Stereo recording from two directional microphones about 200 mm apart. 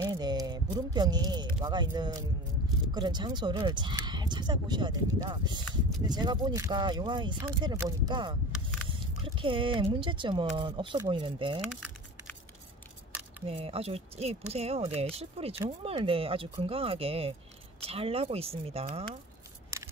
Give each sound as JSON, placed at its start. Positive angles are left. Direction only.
{"t": 0.0, "sound": "speech", "side_deg": -20}
{"t": 8.5, "sound": "single-lens reflex camera", "side_deg": 0}
{"t": 9.2, "sound": "speech", "side_deg": -25}
{"t": 11.7, "sound": "keys jangling", "side_deg": 5}
{"t": 13.5, "sound": "speech", "side_deg": -30}